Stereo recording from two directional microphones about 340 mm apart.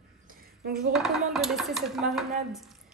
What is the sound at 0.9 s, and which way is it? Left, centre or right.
Speech, centre.